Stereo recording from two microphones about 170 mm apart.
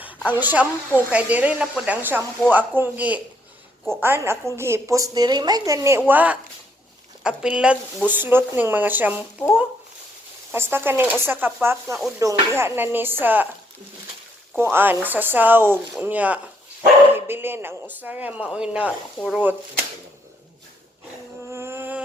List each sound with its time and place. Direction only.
0.0 s a woman's voice: 10° right (ahead or behind)
10.5 s a woman's voice: 15° right (ahead or behind)
14.5 s a woman's voice: 15° right (ahead or behind)
21.5 s insect: 15° right (ahead or behind)